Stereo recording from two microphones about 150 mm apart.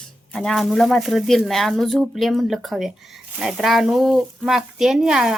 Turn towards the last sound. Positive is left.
turn(degrees=-5)  # may be behind; listen again after turning